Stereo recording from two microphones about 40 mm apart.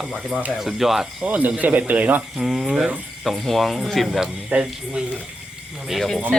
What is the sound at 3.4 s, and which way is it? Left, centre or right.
Speech, centre.